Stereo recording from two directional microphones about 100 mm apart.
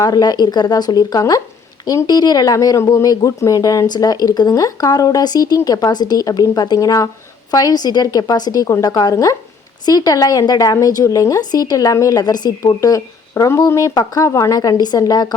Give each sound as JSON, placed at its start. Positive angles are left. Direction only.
{"t": 0.0, "sound": "a woman's voice", "side_deg": 40}